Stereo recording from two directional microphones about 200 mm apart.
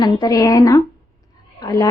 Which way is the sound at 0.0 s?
20° left (ahead or behind).